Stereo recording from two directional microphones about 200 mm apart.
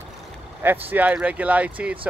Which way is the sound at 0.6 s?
10° right (ahead or behind).